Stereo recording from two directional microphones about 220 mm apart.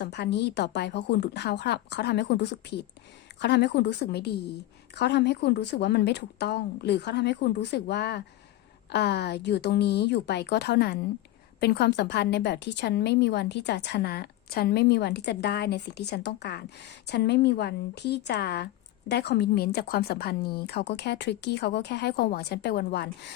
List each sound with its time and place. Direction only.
0.0 s a woman's voice: 50° left (ahead or behind)